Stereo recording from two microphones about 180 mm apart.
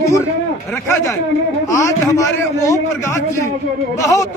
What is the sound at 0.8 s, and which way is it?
Speech, 20° left (ahead or behind).